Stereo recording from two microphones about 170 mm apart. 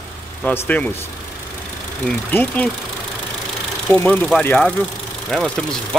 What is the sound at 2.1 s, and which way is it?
Speech, 10° left (ahead or behind).